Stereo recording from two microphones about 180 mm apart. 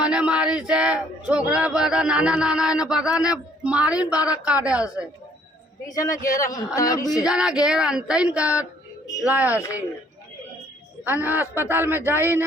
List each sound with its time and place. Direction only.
0.0 s speech: 5° right (ahead or behind)
5.9 s speech: 20° left (ahead or behind)
7.3 s speech: 5° right (ahead or behind)
11.0 s speech: 10° right (ahead or behind)